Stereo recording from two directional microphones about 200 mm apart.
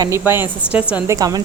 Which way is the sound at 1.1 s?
20° right (ahead or behind).